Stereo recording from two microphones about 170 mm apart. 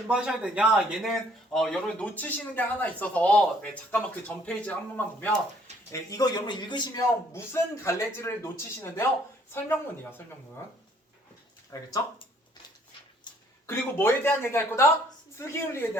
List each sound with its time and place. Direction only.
0.1 s a man's voice: 5° right (ahead or behind)
5.9 s a man's voice: 20° left (ahead or behind)
11.7 s a man's voice: 20° left (ahead or behind)
13.3 s a sound: 25° left (ahead or behind)
13.7 s a man's voice: 15° left (ahead or behind)